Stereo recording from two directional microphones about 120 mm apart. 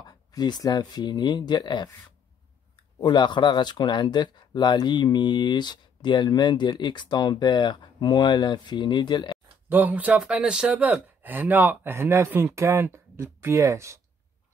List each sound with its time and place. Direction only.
0.0 s speech: 35° left (ahead or behind)
3.0 s speech: 40° left (ahead or behind)
9.7 s speech: 15° right (ahead or behind)